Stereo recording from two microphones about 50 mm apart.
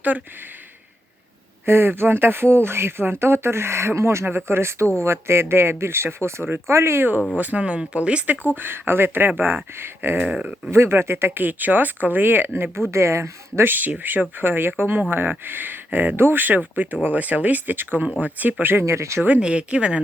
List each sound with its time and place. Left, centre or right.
1.6 s speech: right
7.3 s speech: right
8.5 s speech: right
10.2 s speech: right
10.7 s speech: right
13.7 s speech: right
18.0 s speech: right
18.6 s speech: right
18.9 s speech: right
19.4 s speech: right